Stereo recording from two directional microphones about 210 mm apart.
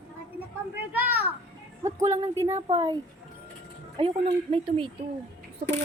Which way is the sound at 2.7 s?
25° right (ahead or behind).